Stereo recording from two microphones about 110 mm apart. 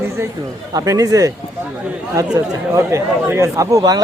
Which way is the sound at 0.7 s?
30° right (ahead or behind).